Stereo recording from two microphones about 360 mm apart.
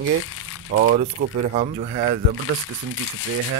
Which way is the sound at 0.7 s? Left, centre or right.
Right.